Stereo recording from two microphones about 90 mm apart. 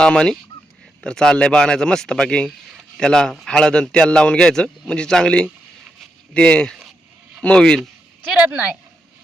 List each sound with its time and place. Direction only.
0.0 s a man's voice: 10° left (ahead or behind)
8.4 s speech: 15° right (ahead or behind)